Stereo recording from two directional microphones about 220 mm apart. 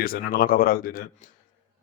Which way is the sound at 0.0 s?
40° left (ahead or behind).